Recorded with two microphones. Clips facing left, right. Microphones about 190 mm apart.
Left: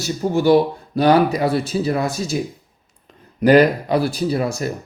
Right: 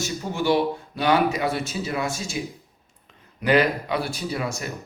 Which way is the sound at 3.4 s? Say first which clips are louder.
Left 8 dB; 40° left (ahead or behind).